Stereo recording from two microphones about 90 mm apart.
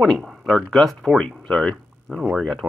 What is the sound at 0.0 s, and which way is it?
Speech, centre (ahead or behind).